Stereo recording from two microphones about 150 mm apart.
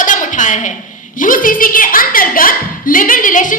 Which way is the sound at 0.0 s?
60° left (ahead or behind).